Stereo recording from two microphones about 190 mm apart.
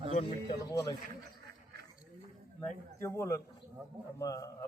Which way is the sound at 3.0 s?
15° left (ahead or behind).